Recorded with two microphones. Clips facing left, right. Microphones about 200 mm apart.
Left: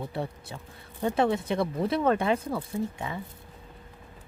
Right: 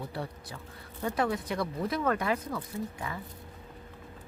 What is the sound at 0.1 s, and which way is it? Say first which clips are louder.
Speech: left 4 dB; 25° left (ahead or behind).